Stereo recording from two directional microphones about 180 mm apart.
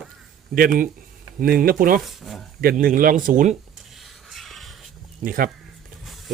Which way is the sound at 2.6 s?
55° right (ahead or behind).